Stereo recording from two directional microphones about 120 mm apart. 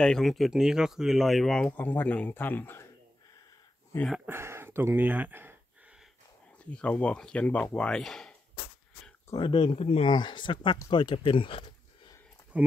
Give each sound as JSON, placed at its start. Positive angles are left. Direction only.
{"t": 0.0, "sound": "speech", "side_deg": 5}
{"t": 4.3, "sound": "speech", "side_deg": -20}
{"t": 6.6, "sound": "speech", "side_deg": 10}
{"t": 9.4, "sound": "speech", "side_deg": 45}
{"t": 10.1, "sound": "speech", "side_deg": 40}